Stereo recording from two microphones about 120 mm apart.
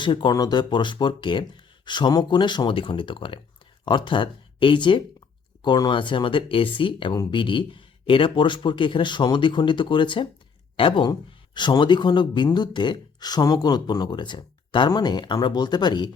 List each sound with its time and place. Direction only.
0.0 s speech: 40° left (ahead or behind)